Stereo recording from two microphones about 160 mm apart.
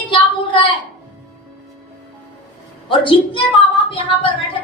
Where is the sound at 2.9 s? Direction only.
35° left (ahead or behind).